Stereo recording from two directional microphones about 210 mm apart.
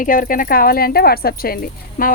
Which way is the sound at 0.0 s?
40° left (ahead or behind).